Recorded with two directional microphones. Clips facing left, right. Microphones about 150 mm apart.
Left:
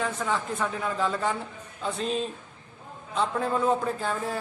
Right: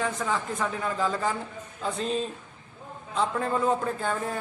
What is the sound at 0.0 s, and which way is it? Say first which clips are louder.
A man's voice: even; centre (ahead or behind).